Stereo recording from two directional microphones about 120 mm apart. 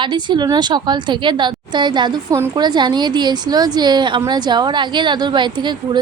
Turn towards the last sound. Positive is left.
turn(degrees=-40)  # may be behind; listen again after turning